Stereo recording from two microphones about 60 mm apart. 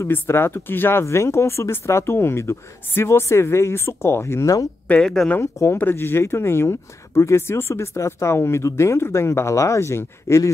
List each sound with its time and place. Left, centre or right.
0.1 s speech: left
1.0 s speech: left
5.0 s speech: centre
5.4 s speech: left
5.8 s speech: left